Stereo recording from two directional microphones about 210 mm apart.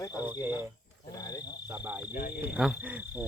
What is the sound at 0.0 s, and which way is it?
Cricket, 15° left (ahead or behind).